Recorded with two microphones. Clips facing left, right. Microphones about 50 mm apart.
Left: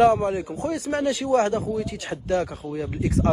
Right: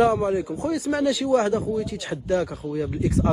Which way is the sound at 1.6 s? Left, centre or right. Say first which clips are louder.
Right 1 dB; left.